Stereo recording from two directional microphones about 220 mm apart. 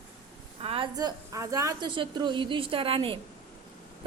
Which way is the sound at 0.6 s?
25° right (ahead or behind).